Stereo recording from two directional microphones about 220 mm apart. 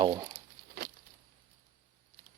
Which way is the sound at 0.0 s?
15° right (ahead or behind).